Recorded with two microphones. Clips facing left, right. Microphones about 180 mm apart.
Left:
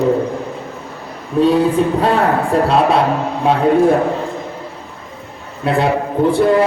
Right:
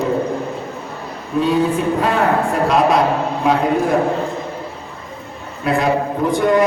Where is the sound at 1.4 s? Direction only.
35° left (ahead or behind).